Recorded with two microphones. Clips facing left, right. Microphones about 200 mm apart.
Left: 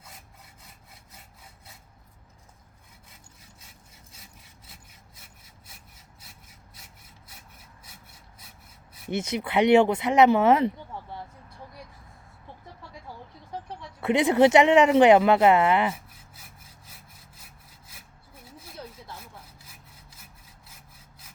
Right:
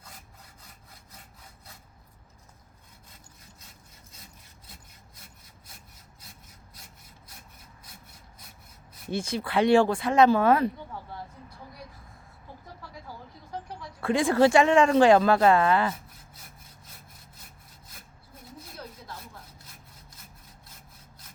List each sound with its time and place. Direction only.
9.0 s speech: 20° left (ahead or behind)
14.0 s speech: 20° left (ahead or behind)
16.3 s sawing: 5° left (ahead or behind)
19.2 s sawing: 10° left (ahead or behind)